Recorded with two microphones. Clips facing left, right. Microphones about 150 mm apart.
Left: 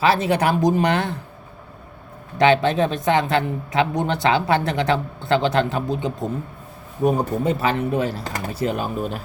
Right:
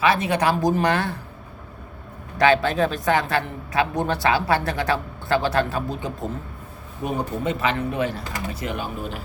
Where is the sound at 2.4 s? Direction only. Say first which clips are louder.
Left 2 dB; 25° left (ahead or behind).